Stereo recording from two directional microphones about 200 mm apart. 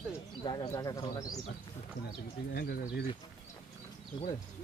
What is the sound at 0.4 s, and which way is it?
Speech, 20° left (ahead or behind).